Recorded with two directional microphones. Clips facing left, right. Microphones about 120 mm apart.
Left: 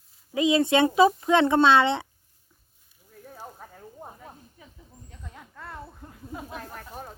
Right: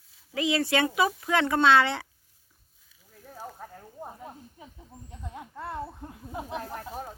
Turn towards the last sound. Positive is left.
turn(degrees=-10)  # may be behind; listen again after turning